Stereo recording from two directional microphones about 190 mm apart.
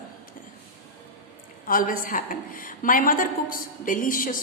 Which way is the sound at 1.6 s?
45° left (ahead or behind).